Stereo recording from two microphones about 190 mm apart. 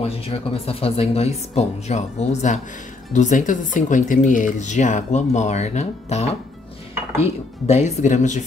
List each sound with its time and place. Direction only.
0.0 s speech: 30° left (ahead or behind)
7.6 s speech: 35° left (ahead or behind)